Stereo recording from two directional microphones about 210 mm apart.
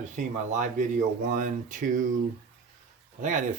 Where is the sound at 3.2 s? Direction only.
35° right (ahead or behind).